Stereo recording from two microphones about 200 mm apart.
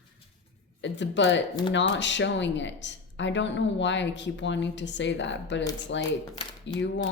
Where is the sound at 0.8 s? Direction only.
65° left (ahead or behind).